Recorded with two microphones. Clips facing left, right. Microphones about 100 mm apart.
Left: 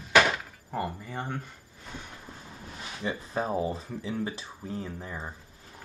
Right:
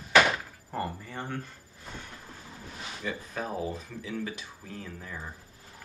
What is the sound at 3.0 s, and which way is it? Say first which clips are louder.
Speech: left 4 dB; 25° left (ahead or behind).